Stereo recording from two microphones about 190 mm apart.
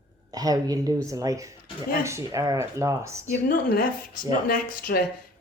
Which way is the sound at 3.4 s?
50° left (ahead or behind).